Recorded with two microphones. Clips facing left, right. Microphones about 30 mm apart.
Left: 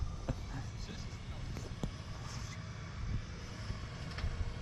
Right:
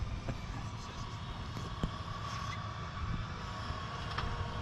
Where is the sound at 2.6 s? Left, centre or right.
Right.